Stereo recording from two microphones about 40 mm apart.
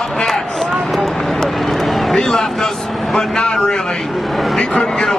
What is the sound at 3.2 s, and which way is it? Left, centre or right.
Speech, centre.